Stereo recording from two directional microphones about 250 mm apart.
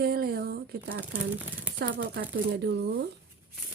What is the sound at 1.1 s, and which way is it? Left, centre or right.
Speech, centre.